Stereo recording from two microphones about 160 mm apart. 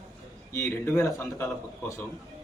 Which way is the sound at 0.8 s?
15° left (ahead or behind).